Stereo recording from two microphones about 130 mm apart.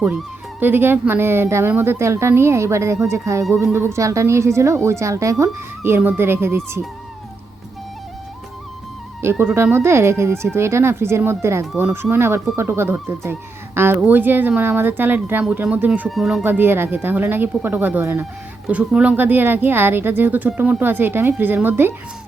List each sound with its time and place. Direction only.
0.6 s a woman's voice: 15° right (ahead or behind)
9.4 s a woman's voice: 15° right (ahead or behind)
16.4 s speech: 15° right (ahead or behind)